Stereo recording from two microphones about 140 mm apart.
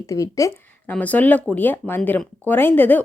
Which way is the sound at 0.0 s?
25° left (ahead or behind).